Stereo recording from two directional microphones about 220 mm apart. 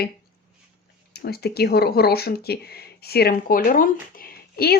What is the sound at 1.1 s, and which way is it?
Speech, 45° left (ahead or behind).